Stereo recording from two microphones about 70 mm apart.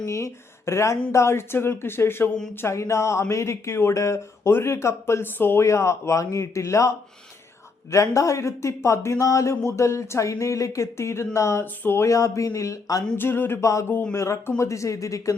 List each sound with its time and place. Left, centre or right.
0.0 s a woman's voice: left
5.6 s speech: left
11.6 s speech: left
12.0 s speech: left
13.1 s speech: left